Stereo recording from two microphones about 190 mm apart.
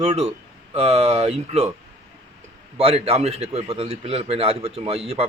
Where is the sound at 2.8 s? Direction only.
30° right (ahead or behind).